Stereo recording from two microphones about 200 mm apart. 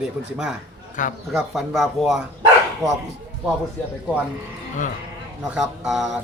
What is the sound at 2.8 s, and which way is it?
Speech, 15° right (ahead or behind).